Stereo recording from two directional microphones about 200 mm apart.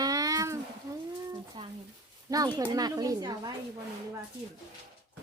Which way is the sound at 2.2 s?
20° right (ahead or behind).